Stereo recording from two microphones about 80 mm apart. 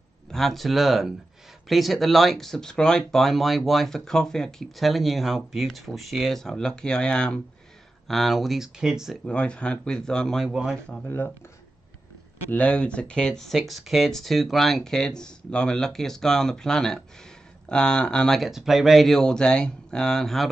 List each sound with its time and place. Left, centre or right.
0.3 s speech: centre
9.2 s speech: centre
10.5 s speech: centre
11.1 s speech: left
12.4 s speech: centre